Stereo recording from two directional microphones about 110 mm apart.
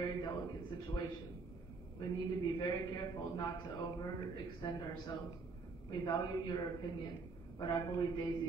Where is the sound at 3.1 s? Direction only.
40° left (ahead or behind).